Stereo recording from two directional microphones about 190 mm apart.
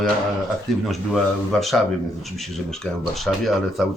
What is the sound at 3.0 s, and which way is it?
Speech, centre (ahead or behind).